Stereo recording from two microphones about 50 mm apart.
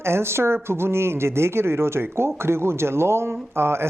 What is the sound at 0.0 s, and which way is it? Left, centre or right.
Speech, right.